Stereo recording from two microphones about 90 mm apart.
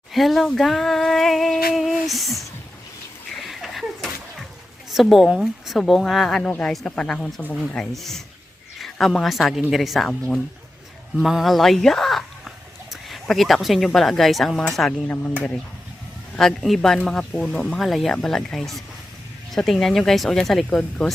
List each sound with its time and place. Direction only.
0.1 s a sound: centre (ahead or behind)
3.5 s a sound: centre (ahead or behind)
5.0 s speech: centre (ahead or behind)
6.4 s speech: 10° left (ahead or behind)
10.1 s speech: 10° left (ahead or behind)
11.2 s speech: centre (ahead or behind)
15.0 s speech: 15° left (ahead or behind)
16.3 s speech: 5° left (ahead or behind)